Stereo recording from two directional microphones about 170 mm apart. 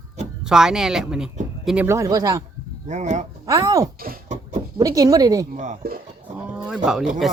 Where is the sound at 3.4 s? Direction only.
20° right (ahead or behind).